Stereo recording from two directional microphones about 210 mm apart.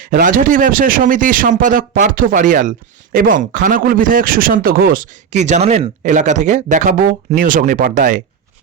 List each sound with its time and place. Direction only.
0.0 s speech: 40° right (ahead or behind)